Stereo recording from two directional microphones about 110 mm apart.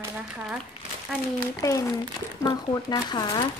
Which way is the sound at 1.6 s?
30° left (ahead or behind).